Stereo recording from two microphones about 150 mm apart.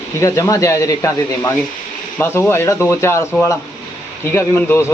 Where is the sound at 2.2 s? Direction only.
15° left (ahead or behind).